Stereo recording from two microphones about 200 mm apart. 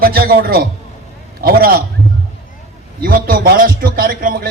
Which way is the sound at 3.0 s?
45° right (ahead or behind).